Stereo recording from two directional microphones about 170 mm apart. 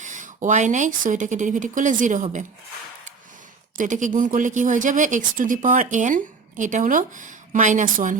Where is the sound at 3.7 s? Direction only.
45° right (ahead or behind).